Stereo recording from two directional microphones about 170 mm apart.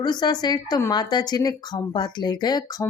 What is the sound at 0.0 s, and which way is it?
A woman's voice, 25° left (ahead or behind).